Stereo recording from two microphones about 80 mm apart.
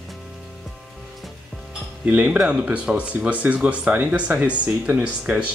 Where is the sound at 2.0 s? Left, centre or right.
Centre.